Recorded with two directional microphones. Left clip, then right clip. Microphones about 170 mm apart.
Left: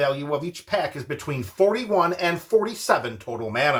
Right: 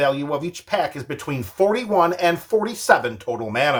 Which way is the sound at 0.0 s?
40° right (ahead or behind).